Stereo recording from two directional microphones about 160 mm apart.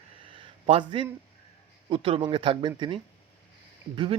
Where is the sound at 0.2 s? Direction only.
35° right (ahead or behind).